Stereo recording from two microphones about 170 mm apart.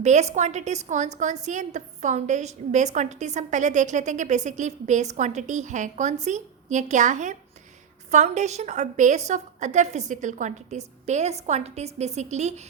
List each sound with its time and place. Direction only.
0.0 s a woman's voice: 40° right (ahead or behind)